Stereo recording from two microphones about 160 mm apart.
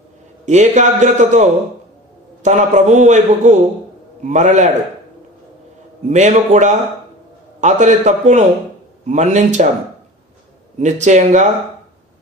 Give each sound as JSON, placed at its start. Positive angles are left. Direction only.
{"t": 0.5, "sound": "a man's voice", "side_deg": -45}
{"t": 6.0, "sound": "a man's voice", "side_deg": -45}
{"t": 10.8, "sound": "a man's voice", "side_deg": -45}